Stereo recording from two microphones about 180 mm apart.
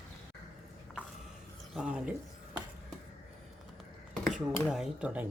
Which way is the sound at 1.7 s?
5° right (ahead or behind).